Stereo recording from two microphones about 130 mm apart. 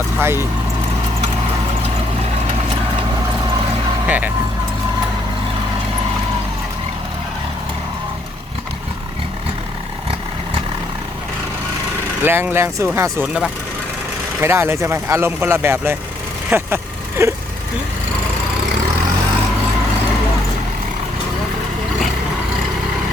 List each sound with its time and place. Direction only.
0.2 s speech: 20° right (ahead or behind)
4.0 s speech: 10° right (ahead or behind)
12.2 s speech: 15° right (ahead or behind)
14.4 s speech: 20° right (ahead or behind)